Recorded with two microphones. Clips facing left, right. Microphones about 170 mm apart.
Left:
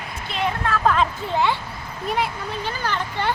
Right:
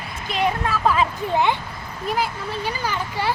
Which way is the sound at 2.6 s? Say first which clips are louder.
Even; 10° right (ahead or behind).